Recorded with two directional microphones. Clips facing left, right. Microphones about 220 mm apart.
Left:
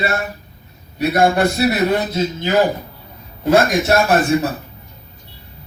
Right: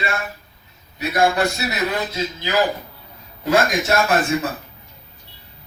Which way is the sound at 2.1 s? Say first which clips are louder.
Left 5 dB; 50° left (ahead or behind).